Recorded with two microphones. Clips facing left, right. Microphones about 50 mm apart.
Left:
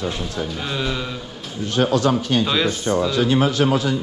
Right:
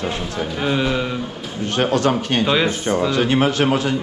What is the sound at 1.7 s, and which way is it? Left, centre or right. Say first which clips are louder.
Speech: even; right.